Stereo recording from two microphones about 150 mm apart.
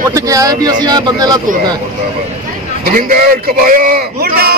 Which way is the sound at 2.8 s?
75° right (ahead or behind).